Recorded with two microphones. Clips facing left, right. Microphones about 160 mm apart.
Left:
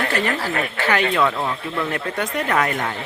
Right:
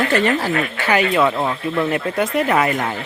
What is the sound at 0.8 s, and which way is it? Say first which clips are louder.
Speech: right 2 dB; 10° right (ahead or behind).